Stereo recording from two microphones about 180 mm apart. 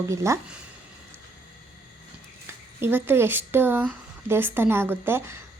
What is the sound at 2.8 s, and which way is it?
Speech, 10° right (ahead or behind).